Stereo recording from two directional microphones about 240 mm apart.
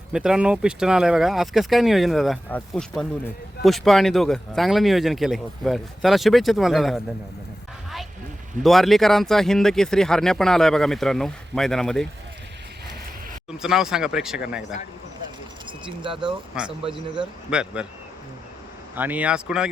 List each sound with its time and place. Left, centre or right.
0.1 s speech: centre
8.6 s speech: centre
13.5 s speech: centre
16.0 s speech: centre
16.6 s speech: centre
18.9 s speech: centre